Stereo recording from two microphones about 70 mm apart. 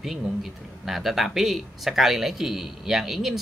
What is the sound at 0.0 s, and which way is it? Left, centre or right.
Speech, centre.